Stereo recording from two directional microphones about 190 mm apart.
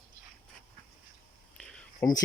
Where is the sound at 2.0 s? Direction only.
20° left (ahead or behind).